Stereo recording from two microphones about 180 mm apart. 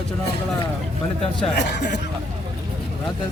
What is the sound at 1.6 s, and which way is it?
Speech, 70° left (ahead or behind).